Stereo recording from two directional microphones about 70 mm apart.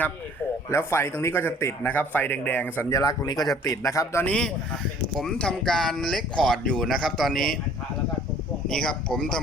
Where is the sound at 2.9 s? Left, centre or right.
Left.